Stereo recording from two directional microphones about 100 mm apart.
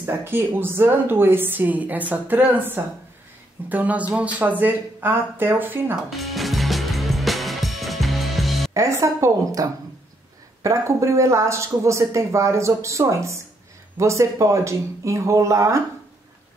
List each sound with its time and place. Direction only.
0.0 s a woman's voice: 20° right (ahead or behind)
6.0 s music: centre (ahead or behind)
8.7 s a woman's voice: 30° right (ahead or behind)